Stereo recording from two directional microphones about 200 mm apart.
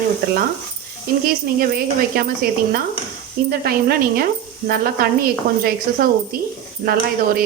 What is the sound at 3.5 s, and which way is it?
Speech, 50° right (ahead or behind).